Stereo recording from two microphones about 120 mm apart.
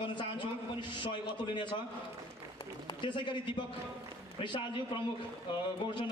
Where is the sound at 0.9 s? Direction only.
40° left (ahead or behind).